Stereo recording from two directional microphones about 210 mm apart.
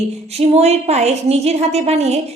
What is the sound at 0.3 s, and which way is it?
A woman's voice, 30° right (ahead or behind).